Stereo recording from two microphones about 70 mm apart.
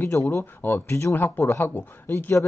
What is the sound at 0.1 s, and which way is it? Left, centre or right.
Speech, left.